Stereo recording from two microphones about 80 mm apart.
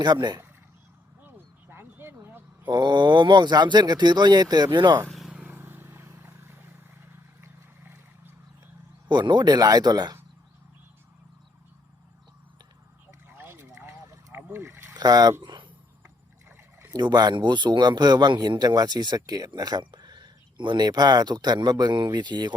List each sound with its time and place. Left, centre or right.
0.0 s speech: right
1.7 s a sound: right
2.6 s speech: right
5.0 s vehicle: centre
5.3 s vehicle: right
9.0 s speech: right
13.2 s a sound: right
14.5 s vehicle: right
14.9 s speech: right
16.9 s speech: right
19.8 s speech: right